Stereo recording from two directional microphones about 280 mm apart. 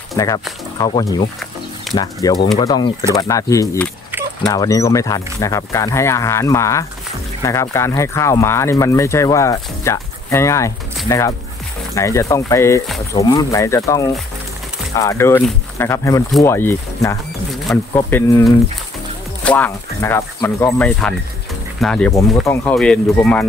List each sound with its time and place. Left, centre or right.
0.1 s speech: centre
1.9 s a sound: centre
2.2 s speech: centre